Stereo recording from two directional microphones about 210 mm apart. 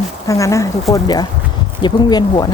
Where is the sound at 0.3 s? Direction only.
15° left (ahead or behind).